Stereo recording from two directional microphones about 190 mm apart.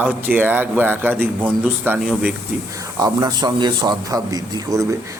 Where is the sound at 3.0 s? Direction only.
20° right (ahead or behind).